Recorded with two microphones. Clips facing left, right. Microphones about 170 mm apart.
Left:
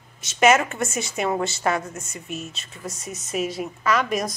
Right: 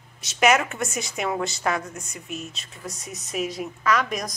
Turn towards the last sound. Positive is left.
turn(degrees=5)  # may be behind; listen again after turning